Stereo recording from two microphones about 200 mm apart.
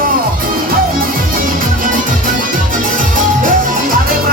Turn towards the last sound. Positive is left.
turn(degrees=-40)  # may be behind; listen again after turning